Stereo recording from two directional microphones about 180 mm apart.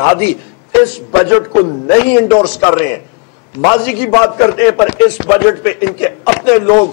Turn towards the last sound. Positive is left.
turn(degrees=10)  # may be behind; listen again after turning